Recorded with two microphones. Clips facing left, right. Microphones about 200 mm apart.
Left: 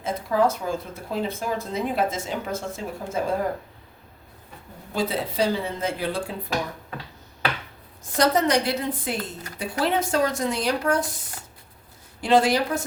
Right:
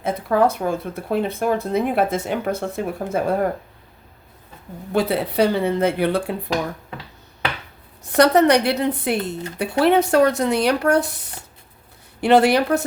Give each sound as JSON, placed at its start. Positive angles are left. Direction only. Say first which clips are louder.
{"t": 0.0, "sound": "speech", "louder": "right 4 dB", "side_deg": -60}
{"t": 4.9, "sound": "speech", "louder": "right 6 dB", "side_deg": -65}
{"t": 8.0, "sound": "speech", "louder": "right 7 dB", "side_deg": -65}